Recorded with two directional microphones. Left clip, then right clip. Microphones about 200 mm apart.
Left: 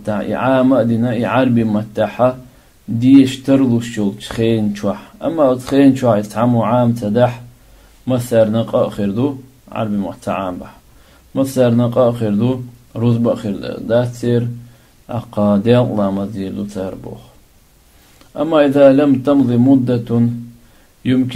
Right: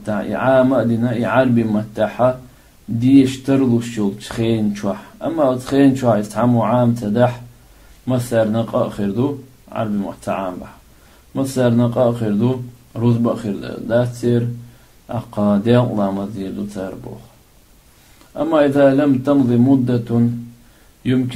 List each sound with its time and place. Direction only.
0.0 s speech: 35° left (ahead or behind)
18.3 s speech: 35° left (ahead or behind)